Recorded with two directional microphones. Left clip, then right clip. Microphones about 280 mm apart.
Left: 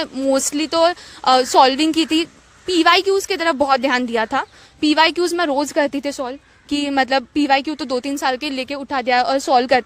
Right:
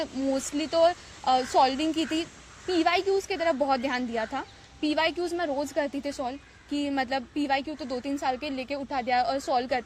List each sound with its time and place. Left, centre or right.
0.0 s a woman's voice: left